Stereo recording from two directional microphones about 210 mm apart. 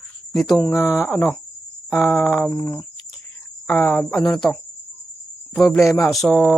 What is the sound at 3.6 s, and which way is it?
Cricket, 5° left (ahead or behind).